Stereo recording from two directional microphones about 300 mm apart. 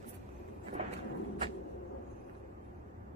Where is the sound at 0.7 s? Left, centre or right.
Right.